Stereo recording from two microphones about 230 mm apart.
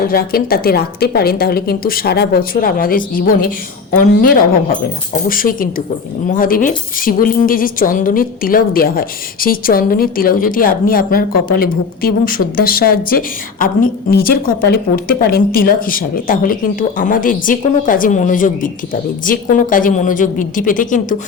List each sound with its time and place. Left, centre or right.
0.1 s speech: left